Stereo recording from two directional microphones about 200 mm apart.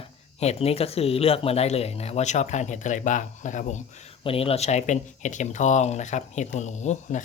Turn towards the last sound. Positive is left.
turn(degrees=35)  # may be behind; listen again after turning